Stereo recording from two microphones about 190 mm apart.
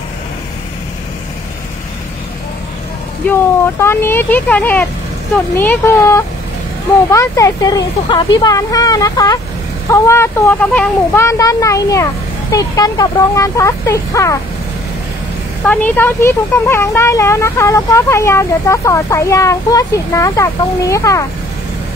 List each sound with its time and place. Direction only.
3.8 s speech: 10° left (ahead or behind)
15.6 s speech: 10° left (ahead or behind)